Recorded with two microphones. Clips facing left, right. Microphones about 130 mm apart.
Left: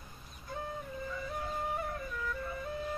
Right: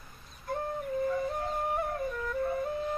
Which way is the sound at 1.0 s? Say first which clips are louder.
Right 7 dB; 50° right (ahead or behind).